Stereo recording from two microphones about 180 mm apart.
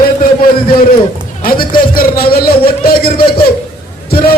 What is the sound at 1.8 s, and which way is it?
Speech, 55° left (ahead or behind).